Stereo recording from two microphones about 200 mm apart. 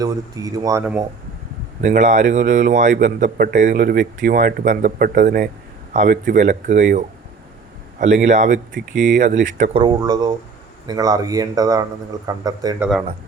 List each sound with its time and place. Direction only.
0.0 s speech: 15° right (ahead or behind)
1.8 s a man's voice: 40° right (ahead or behind)
9.7 s speech: 20° right (ahead or behind)
12.8 s speech: 5° right (ahead or behind)